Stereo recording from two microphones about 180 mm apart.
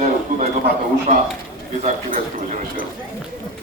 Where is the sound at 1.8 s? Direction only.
45° right (ahead or behind).